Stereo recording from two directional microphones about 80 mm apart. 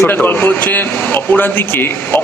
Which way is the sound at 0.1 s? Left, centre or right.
Left.